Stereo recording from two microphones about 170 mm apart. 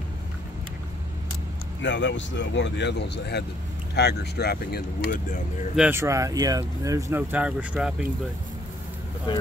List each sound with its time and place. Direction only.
1.8 s speech: 90° left; by 5.7 s 50° left (ahead or behind)
5.8 s speech: 15° right (ahead or behind)
9.3 s speech: 25° left (ahead or behind)